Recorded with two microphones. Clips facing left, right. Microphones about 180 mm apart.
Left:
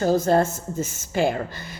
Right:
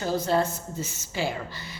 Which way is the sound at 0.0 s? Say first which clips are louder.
Left 6 dB; 45° left (ahead or behind).